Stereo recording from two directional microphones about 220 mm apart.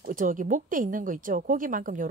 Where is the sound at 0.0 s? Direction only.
40° right (ahead or behind).